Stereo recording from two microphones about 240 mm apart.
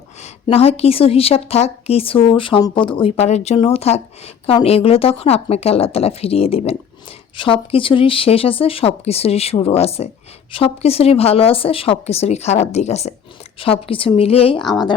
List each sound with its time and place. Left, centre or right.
0.2 s a woman's voice: left